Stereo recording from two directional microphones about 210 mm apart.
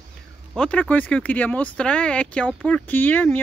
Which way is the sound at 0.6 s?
5° left (ahead or behind).